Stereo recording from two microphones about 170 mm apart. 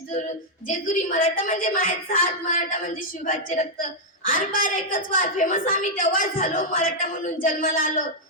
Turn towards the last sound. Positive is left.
turn(degrees=55)  # may be behind; listen again after turning